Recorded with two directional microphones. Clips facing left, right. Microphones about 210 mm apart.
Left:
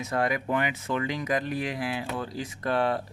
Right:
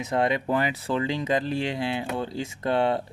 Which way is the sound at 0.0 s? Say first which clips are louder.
Right 3 dB; 20° right (ahead or behind).